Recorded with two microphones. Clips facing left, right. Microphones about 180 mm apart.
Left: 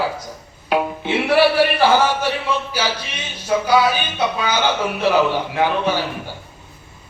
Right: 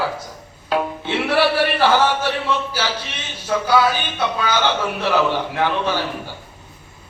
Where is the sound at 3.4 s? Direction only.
15° left (ahead or behind).